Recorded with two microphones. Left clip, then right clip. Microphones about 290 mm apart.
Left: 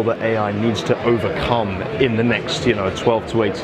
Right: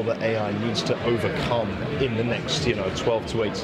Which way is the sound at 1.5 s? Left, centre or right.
Left.